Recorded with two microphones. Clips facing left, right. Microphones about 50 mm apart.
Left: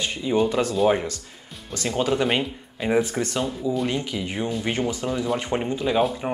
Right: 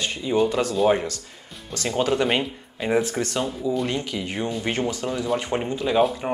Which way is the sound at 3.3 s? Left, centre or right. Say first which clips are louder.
Even; centre.